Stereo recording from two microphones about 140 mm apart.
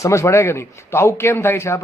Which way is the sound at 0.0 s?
20° left (ahead or behind).